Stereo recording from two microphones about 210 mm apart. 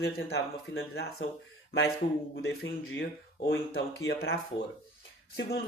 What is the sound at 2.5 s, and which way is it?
Speech, 50° left (ahead or behind).